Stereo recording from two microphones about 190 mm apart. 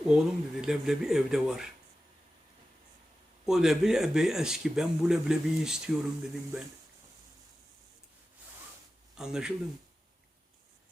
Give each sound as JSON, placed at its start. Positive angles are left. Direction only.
{"t": 0.1, "sound": "speech", "side_deg": -5}
{"t": 3.4, "sound": "speech", "side_deg": 0}
{"t": 9.1, "sound": "speech", "side_deg": -5}